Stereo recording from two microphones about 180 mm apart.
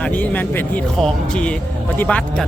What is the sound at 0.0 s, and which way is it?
Speech, 10° left (ahead or behind).